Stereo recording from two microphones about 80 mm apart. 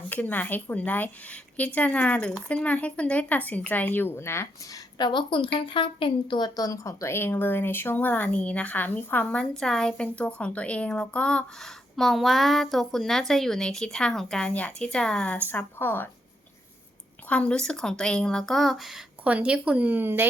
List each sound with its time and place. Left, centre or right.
0.1 s speech: left
4.7 s a woman's voice: left
6.6 s speech: left
9.4 s speech: centre
11.9 s a woman's voice: centre
15.4 s speech: left
17.2 s speech: centre
19.2 s speech: centre